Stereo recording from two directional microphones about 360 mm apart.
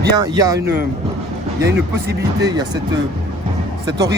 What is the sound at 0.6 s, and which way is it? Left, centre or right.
Speech, right.